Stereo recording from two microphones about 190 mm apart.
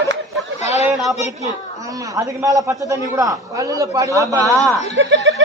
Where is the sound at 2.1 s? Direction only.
15° right (ahead or behind).